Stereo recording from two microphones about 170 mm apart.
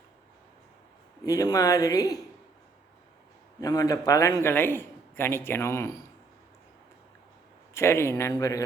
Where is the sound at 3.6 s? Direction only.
20° left (ahead or behind).